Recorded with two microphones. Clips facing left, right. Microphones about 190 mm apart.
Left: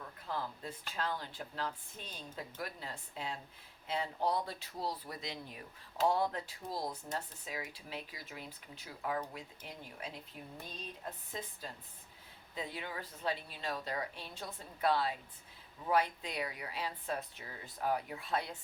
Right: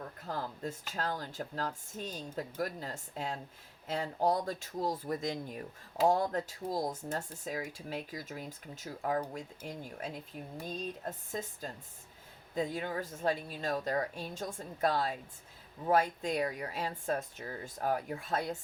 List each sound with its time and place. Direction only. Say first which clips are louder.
0.3 s speech: right 2 dB; 45° right (ahead or behind)